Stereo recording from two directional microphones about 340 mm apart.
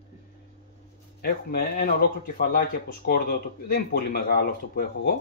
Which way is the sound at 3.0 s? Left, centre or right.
Left.